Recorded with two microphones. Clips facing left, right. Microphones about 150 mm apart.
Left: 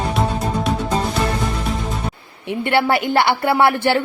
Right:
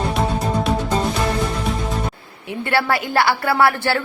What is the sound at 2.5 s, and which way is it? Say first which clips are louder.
A woman's voice: left 3 dB; 20° left (ahead or behind).